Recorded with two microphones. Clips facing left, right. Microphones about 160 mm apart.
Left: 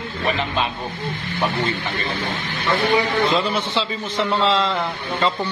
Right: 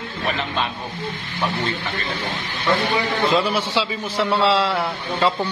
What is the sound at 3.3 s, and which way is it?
A man's voice, 10° right (ahead or behind).